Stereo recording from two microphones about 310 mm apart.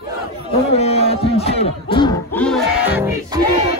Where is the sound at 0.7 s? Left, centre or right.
Centre.